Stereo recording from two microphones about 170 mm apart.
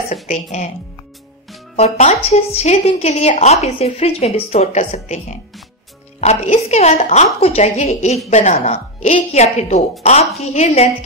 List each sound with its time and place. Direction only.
0.1 s speech: 45° left (ahead or behind)
1.8 s a woman's voice: 40° left (ahead or behind)
6.2 s a woman's voice: 40° left (ahead or behind)